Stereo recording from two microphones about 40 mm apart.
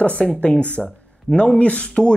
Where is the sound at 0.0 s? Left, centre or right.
Left.